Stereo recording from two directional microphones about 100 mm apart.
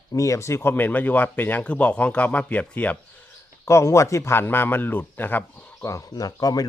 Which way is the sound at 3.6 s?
30° left (ahead or behind).